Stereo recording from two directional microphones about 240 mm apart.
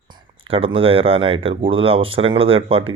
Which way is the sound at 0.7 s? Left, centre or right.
Right.